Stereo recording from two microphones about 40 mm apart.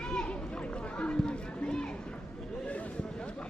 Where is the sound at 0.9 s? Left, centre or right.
Left.